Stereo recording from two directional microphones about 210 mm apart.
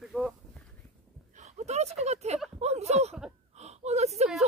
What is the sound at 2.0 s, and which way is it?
Speech, 30° right (ahead or behind).